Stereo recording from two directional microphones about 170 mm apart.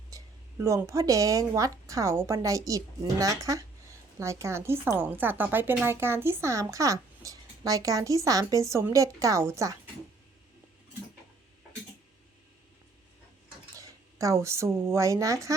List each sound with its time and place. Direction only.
0.1 s a sound: 20° right (ahead or behind)
0.6 s a woman's voice: 15° right (ahead or behind)
13.7 s speech: 20° right (ahead or behind)